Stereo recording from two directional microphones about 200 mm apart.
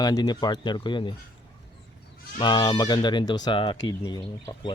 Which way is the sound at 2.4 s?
20° left (ahead or behind).